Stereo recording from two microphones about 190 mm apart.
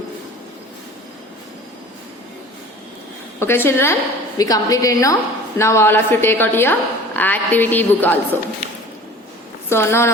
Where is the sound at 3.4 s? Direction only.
10° left (ahead or behind).